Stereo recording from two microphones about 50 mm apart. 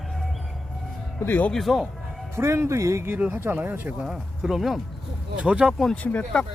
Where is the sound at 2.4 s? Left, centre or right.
Right.